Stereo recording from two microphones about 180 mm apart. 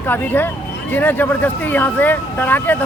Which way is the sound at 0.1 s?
10° left (ahead or behind).